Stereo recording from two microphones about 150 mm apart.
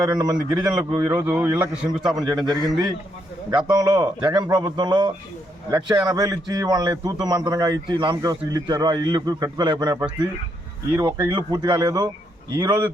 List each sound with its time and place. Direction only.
0.1 s a man's voice: 25° right (ahead or behind)
1.3 s a man's voice: 15° right (ahead or behind)
2.5 s a man's voice: 25° right (ahead or behind)